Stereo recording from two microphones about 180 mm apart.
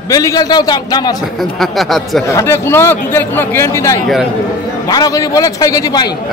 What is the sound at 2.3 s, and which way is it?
A man's voice, 15° left (ahead or behind).